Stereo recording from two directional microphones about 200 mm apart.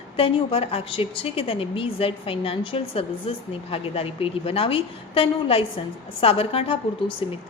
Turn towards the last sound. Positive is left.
turn(degrees=25)  # may be behind; listen again after turning